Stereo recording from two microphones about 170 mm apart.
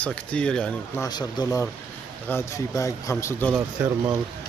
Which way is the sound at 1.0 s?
25° left (ahead or behind).